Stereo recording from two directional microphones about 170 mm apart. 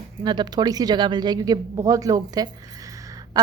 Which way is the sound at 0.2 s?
25° right (ahead or behind).